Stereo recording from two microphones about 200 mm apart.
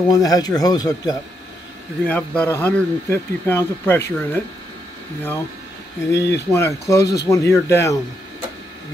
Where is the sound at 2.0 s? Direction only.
10° left (ahead or behind).